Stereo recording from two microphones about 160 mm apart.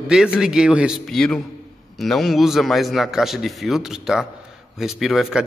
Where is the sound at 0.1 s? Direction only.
5° right (ahead or behind).